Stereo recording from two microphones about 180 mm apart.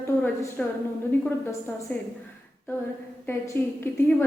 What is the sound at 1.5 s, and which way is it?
Speech, 10° left (ahead or behind).